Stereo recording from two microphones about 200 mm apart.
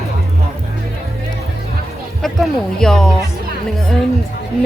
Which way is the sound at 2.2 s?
5° left (ahead or behind).